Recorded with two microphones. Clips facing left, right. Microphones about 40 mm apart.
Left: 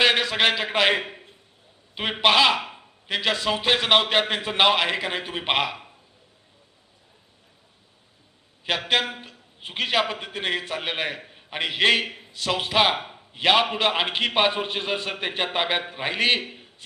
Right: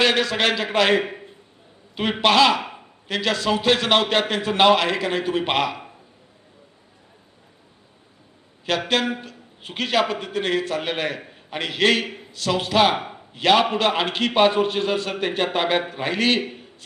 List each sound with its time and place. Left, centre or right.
0.0 s a man's voice: centre
8.9 s a man's voice: centre